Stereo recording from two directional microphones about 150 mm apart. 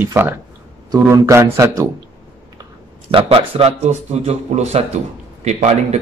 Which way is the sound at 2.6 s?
35° right (ahead or behind).